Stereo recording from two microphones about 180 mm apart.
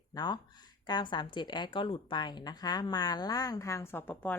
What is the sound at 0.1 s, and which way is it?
A woman's voice, 25° left (ahead or behind).